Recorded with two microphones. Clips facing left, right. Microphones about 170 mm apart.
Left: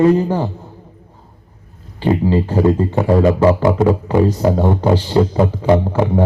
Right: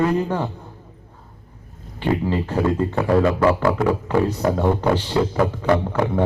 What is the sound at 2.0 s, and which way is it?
A man's voice, 30° left (ahead or behind).